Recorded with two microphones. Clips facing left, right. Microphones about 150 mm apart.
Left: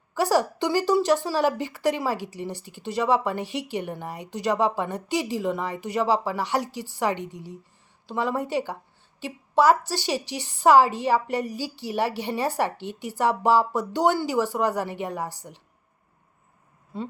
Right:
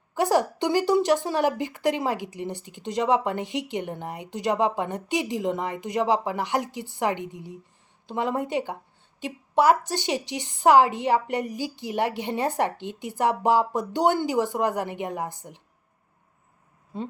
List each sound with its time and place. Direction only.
0.2 s a woman's voice: 15° right (ahead or behind)